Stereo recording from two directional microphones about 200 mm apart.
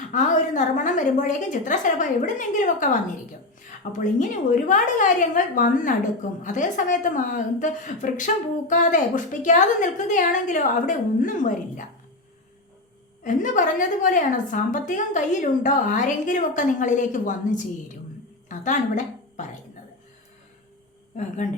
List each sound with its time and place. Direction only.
0.1 s a woman's voice: 40° left (ahead or behind)
13.2 s a woman's voice: 40° left (ahead or behind)
18.4 s a sound: 40° left (ahead or behind)